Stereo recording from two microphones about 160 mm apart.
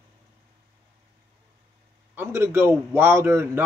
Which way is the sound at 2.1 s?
15° right (ahead or behind).